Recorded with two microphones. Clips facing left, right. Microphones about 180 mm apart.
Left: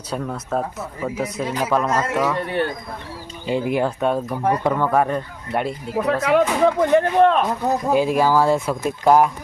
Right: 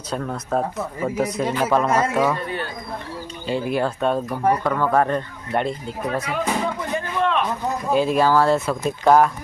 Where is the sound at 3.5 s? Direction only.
15° left (ahead or behind).